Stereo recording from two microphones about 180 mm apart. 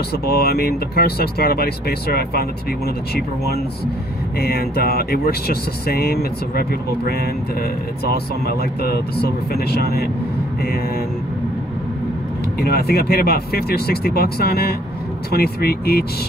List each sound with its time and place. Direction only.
0.3 s speech: 60° left (ahead or behind)
4.4 s speech: 60° left (ahead or behind)
8.0 s speech: 60° left (ahead or behind)
12.5 s speech: 60° left (ahead or behind)